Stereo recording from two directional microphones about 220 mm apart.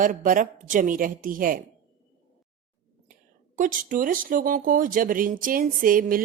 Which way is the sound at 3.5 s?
35° right (ahead or behind).